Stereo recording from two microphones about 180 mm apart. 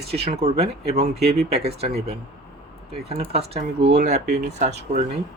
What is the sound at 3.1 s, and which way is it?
Speech, 35° right (ahead or behind).